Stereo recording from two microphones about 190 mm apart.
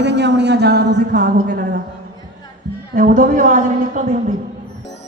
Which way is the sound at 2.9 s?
45° right (ahead or behind).